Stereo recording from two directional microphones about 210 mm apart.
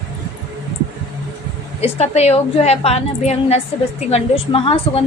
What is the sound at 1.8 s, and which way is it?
A woman's voice, 30° left (ahead or behind).